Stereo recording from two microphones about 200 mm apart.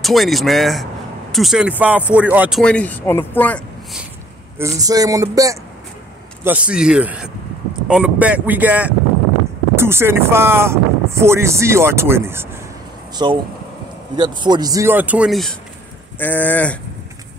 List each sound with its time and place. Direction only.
0.0 s speech: centre (ahead or behind)
2.6 s speech: 5° left (ahead or behind)
4.6 s speech: 15° right (ahead or behind)
13.1 s speech: 20° right (ahead or behind); by 16.7 s 10° left (ahead or behind)